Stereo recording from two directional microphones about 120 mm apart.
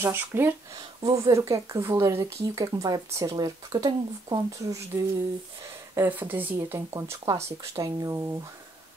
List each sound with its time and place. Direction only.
0.0 s speech: 15° right (ahead or behind)
0.7 s speech: 30° right (ahead or behind)
5.9 s speech: 15° right (ahead or behind)
6.9 s speech: 25° right (ahead or behind)